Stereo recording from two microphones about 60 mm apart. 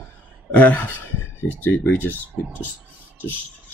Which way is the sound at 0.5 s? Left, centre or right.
Left.